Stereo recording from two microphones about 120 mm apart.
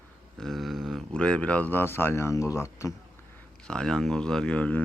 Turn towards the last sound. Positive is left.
turn(degrees=10)  # may be behind; listen again after turning